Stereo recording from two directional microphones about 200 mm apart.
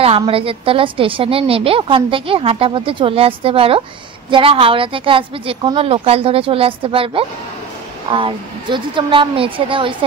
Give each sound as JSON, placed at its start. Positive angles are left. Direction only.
{"t": 0.0, "sound": "a woman's voice", "side_deg": -30}